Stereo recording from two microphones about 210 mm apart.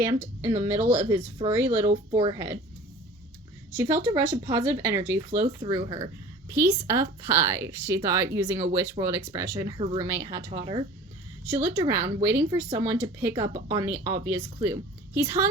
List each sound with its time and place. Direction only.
0.0 s speech: 15° right (ahead or behind)
1.9 s speech: 25° right (ahead or behind)
3.8 s speech: 10° right (ahead or behind)